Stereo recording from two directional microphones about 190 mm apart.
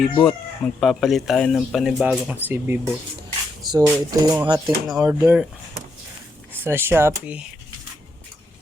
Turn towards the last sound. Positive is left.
turn(degrees=-5)  # may be behind; listen again after turning